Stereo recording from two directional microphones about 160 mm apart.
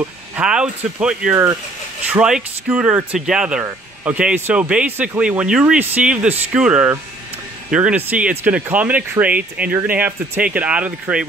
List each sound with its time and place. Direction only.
0.0 s speech: 5° right (ahead or behind)